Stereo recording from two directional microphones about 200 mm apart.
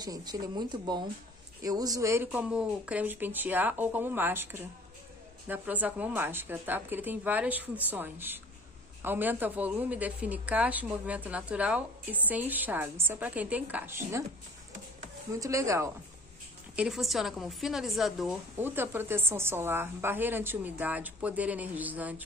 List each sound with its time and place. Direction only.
0.0 s a woman's voice: 20° right (ahead or behind)
15.4 s a woman's voice: 15° right (ahead or behind)
16.7 s a woman's voice: 5° right (ahead or behind)